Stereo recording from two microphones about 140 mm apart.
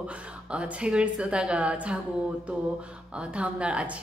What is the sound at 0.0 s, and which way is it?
Speech, 10° right (ahead or behind).